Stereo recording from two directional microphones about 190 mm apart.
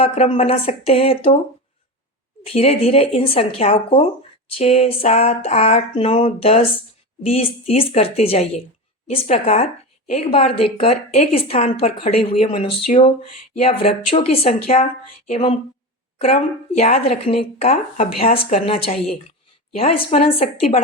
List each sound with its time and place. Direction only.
0.0 s speech: 30° left (ahead or behind)
2.5 s a woman's voice: 30° left (ahead or behind)